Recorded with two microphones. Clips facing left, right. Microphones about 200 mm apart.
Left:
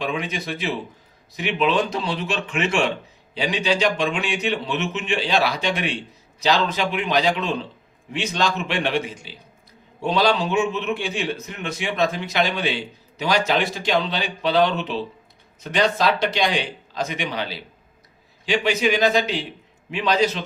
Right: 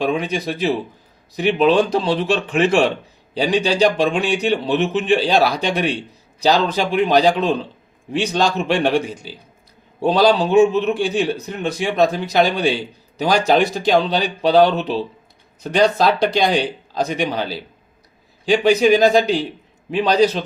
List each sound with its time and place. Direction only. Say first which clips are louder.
0.0 s a man's voice: right 6 dB; 35° right (ahead or behind)